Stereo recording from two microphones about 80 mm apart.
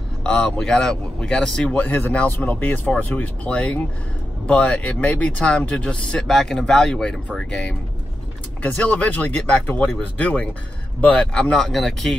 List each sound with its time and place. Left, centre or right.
0.2 s a man's voice: centre